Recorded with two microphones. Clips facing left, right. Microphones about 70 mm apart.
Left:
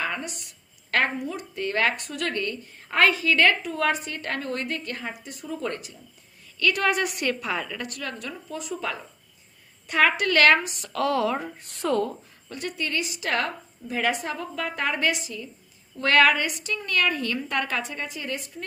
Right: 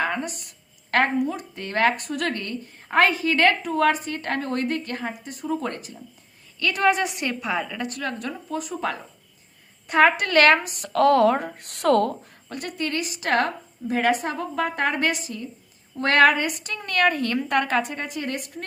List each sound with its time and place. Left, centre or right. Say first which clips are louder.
0.0 s a woman's voice: right 4 dB; right; by 7.9 s centre
7.9 s a woman's voice: right 5 dB; right
9.8 s a woman's voice: right 4 dB; right
12.5 s a woman's voice: right 2 dB; right